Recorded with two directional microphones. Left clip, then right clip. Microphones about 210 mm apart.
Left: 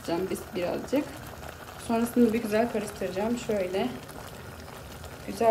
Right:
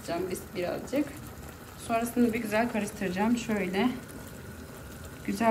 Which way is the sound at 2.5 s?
5° left (ahead or behind).